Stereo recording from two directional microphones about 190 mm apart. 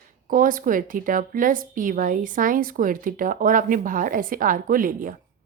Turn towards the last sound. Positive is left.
turn(degrees=-45)  # may be behind; listen again after turning